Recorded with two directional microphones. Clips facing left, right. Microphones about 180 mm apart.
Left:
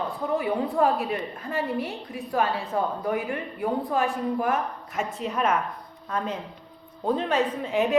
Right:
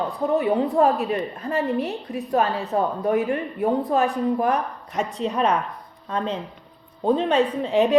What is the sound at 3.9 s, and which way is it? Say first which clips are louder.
Speech: right 4 dB; 35° right (ahead or behind).